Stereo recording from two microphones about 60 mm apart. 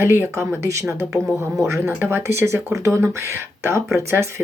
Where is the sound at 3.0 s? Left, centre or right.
Right.